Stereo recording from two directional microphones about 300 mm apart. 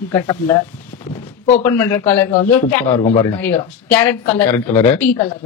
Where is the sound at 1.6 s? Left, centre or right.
Centre.